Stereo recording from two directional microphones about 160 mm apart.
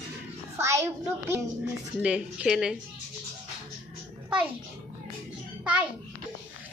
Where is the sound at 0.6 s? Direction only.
20° right (ahead or behind).